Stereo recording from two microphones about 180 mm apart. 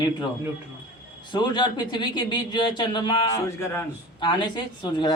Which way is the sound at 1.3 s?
25° left (ahead or behind).